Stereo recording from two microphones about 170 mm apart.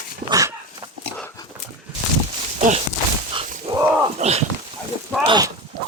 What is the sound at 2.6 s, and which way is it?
Walk, 45° right (ahead or behind).